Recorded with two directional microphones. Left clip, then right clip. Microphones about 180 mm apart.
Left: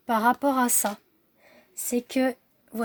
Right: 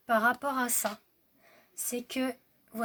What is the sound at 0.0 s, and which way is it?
A woman's voice, 45° left (ahead or behind).